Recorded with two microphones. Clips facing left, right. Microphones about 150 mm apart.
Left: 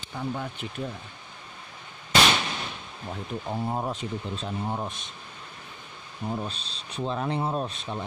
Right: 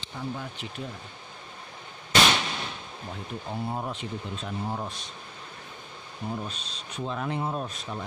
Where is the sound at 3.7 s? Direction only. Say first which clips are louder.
Left 3 dB; 40° left (ahead or behind).